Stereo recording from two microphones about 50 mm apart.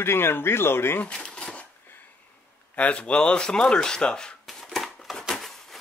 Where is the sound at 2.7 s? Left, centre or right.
Left.